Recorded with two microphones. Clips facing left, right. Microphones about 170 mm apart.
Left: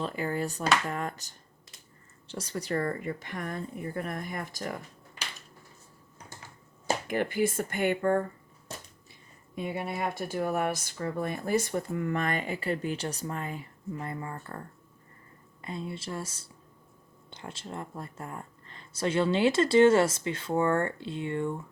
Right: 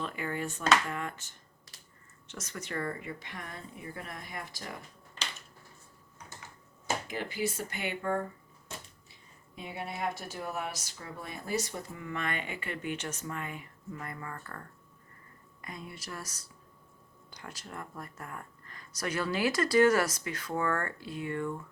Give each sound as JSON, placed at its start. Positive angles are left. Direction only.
{"t": 0.0, "sound": "speech", "side_deg": 35}
{"t": 7.1, "sound": "speech", "side_deg": 55}
{"t": 9.6, "sound": "speech", "side_deg": 55}
{"t": 15.6, "sound": "speech", "side_deg": 25}